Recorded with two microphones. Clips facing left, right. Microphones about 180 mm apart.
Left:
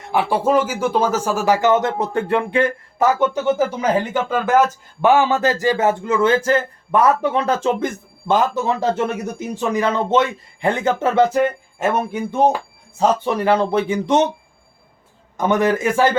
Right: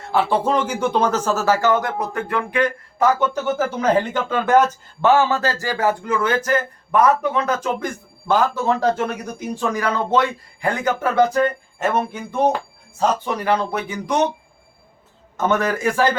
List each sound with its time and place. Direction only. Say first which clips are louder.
0.0 s speech: left 1 dB; 15° left (ahead or behind)
3.0 s speech: left 1 dB; 15° left (ahead or behind)
5.0 s a man's voice: left 2 dB; 15° left (ahead or behind)
11.8 s speech: left 2 dB; 10° left (ahead or behind)
13.2 s a man's voice: left 4 dB; 25° left (ahead or behind)
15.4 s speech: left 3 dB; 15° left (ahead or behind)